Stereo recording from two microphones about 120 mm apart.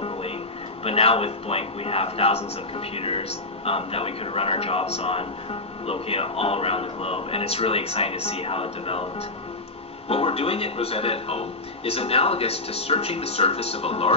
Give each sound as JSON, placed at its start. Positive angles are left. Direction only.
{"t": 0.8, "sound": "speech", "side_deg": 55}
{"t": 10.0, "sound": "speech", "side_deg": 55}